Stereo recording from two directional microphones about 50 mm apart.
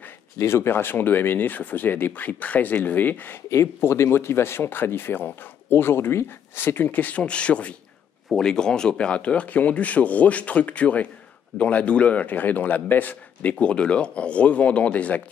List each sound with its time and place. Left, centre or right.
0.4 s speech: left
0.7 s speech: left
3.4 s speech: left
6.9 s speech: left
8.3 s speech: centre; by 13.7 s left
13.7 s speech: left